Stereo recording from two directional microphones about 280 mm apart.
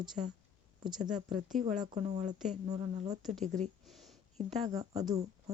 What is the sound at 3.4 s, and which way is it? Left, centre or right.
Speech, right.